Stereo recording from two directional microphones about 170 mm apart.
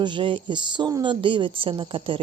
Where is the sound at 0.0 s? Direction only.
30° right (ahead or behind).